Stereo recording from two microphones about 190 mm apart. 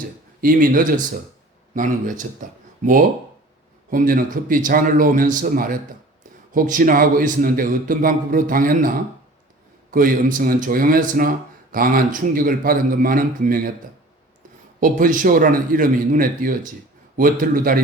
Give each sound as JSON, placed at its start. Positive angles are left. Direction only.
{"t": 0.0, "sound": "a man's voice", "side_deg": -50}
{"t": 3.8, "sound": "a man's voice", "side_deg": -45}
{"t": 14.8, "sound": "a man's voice", "side_deg": -45}